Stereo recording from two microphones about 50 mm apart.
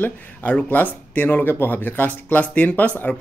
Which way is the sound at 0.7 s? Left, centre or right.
Left.